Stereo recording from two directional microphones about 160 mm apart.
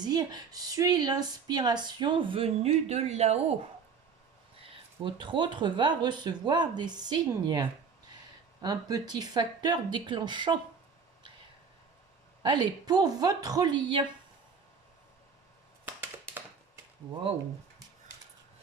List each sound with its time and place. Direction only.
0.0 s a woman's voice: 25° right (ahead or behind); by 3.3 s 40° right (ahead or behind)
4.6 s a woman's voice: 35° right (ahead or behind)
12.4 s a woman's voice: 30° right (ahead or behind)